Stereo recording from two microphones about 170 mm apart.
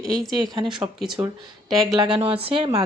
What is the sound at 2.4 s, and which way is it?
Speech, 30° right (ahead or behind).